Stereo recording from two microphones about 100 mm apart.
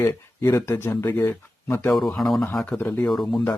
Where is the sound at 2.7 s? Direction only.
20° left (ahead or behind).